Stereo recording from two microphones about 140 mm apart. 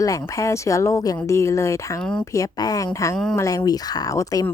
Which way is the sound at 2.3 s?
25° left (ahead or behind).